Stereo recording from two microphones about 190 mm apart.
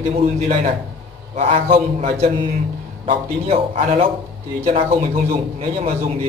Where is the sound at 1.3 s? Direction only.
35° right (ahead or behind).